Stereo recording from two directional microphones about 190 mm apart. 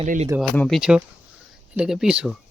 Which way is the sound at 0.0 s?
40° right (ahead or behind).